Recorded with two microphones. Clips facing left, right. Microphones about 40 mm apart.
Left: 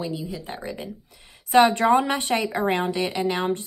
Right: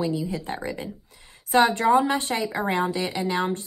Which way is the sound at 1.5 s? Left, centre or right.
Left.